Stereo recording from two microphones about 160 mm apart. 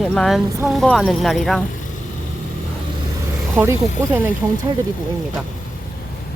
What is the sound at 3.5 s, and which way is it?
Speech, 15° right (ahead or behind).